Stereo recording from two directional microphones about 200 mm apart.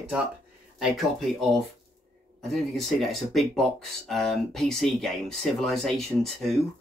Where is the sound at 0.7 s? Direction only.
Centre (ahead or behind).